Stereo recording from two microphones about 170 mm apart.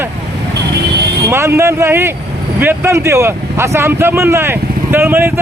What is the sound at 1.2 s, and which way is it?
Speech, 15° right (ahead or behind).